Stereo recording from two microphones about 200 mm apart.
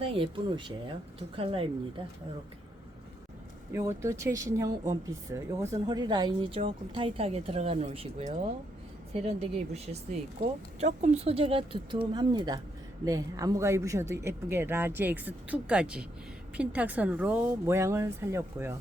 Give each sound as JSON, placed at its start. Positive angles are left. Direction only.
{"t": 0.0, "sound": "speech", "side_deg": -25}
{"t": 3.7, "sound": "speech", "side_deg": -15}